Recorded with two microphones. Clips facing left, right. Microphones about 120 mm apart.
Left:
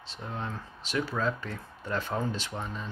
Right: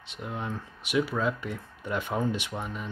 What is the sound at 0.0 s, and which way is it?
Speech, 15° right (ahead or behind).